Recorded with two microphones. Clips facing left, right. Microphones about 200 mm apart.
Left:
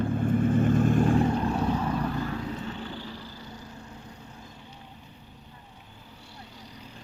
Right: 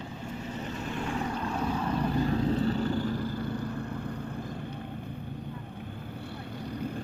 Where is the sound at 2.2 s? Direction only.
35° right (ahead or behind); by 4.8 s 55° right (ahead or behind).